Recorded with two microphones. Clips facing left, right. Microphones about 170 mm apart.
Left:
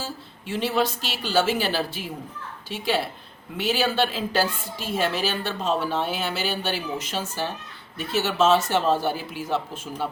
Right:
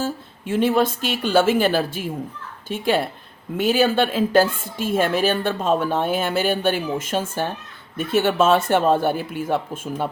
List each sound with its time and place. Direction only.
0.0 s a woman's voice: 50° right (ahead or behind)